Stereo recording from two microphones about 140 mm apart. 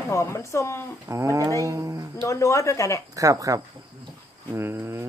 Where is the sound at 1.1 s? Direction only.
20° right (ahead or behind).